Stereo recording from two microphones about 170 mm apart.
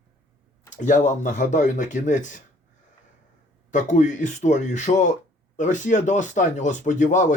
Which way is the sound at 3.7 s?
45° left (ahead or behind).